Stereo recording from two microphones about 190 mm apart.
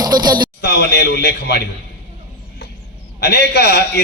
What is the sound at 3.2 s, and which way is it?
Speech, 60° left (ahead or behind).